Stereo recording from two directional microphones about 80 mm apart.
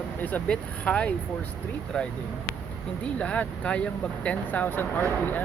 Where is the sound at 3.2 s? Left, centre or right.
Centre.